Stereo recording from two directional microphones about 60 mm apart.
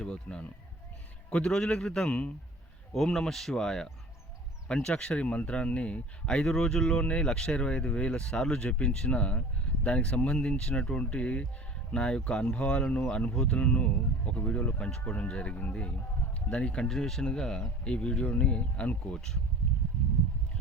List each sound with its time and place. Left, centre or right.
0.0 s speech: centre
2.9 s speech: centre